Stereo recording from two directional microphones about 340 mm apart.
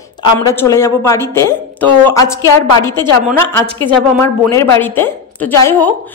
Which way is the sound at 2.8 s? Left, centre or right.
Centre.